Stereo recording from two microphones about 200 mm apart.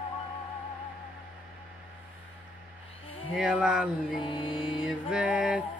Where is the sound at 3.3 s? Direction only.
5° right (ahead or behind).